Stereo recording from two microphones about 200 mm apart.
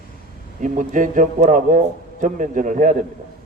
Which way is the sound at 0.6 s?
40° right (ahead or behind).